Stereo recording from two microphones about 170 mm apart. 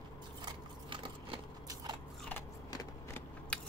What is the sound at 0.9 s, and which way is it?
Biting, 30° right (ahead or behind).